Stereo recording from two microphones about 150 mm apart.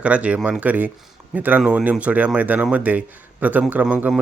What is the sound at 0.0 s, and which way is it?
Speech, 10° right (ahead or behind).